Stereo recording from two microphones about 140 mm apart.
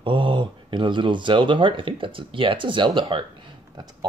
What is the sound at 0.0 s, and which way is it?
Speech, 35° right (ahead or behind).